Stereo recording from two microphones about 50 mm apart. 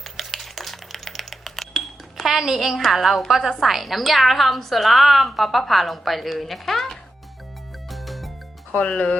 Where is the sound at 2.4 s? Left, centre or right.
Centre.